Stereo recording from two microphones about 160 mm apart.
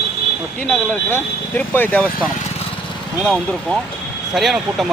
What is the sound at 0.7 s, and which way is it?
Speech, 10° left (ahead or behind).